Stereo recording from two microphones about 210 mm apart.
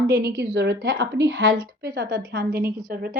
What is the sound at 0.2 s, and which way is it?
A woman's voice, 50° right (ahead or behind).